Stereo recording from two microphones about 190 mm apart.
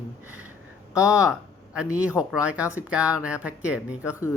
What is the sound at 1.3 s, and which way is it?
A man's voice, 5° right (ahead or behind).